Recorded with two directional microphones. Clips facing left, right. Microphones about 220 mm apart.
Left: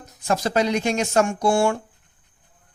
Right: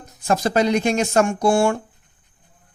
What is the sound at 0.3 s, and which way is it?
Speech, 50° right (ahead or behind).